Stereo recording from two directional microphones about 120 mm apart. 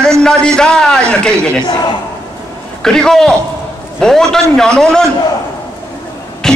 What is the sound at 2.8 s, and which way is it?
Speech, 5° left (ahead or behind).